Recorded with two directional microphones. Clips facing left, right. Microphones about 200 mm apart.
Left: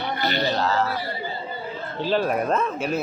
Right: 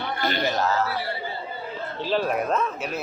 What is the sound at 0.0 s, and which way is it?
Male singing, 50° right (ahead or behind).